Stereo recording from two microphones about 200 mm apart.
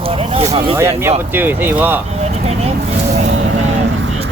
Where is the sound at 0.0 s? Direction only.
30° right (ahead or behind).